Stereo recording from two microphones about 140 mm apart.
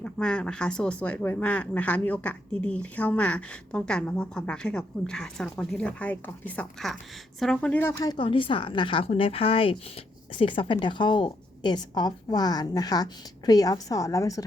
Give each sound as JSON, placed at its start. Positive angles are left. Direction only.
{"t": 0.0, "sound": "speech", "side_deg": 5}
{"t": 8.0, "sound": "a woman's voice", "side_deg": 30}